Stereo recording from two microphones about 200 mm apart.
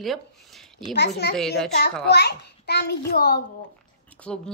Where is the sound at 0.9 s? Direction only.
55° left (ahead or behind).